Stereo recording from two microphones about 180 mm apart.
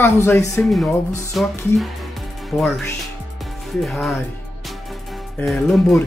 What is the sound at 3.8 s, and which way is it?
Speech, centre (ahead or behind).